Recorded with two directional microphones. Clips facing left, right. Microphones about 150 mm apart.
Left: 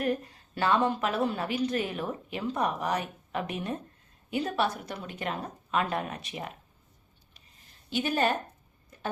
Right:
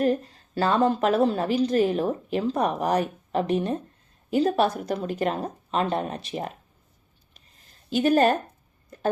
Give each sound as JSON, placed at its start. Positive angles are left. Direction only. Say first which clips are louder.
{"t": 0.0, "sound": "a woman's voice", "louder": "right 6 dB", "side_deg": -30}
{"t": 7.9, "sound": "speech", "louder": "right 8 dB", "side_deg": -40}